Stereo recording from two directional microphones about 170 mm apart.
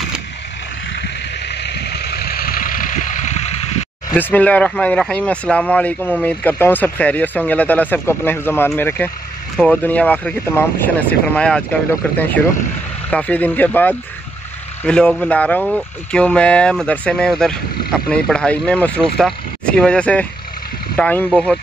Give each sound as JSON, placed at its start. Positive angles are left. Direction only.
{"t": 0.9, "sound": "vehicle", "side_deg": 85}
{"t": 4.1, "sound": "speech", "side_deg": 10}